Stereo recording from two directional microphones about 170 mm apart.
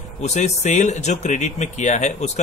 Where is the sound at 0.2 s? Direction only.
40° left (ahead or behind).